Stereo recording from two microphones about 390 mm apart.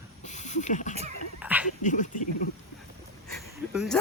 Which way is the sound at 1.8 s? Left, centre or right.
Centre.